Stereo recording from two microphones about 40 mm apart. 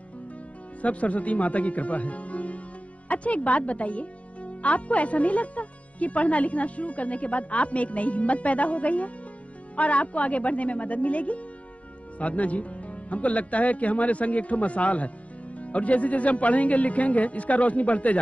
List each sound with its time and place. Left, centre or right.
0.8 s a woman's voice: left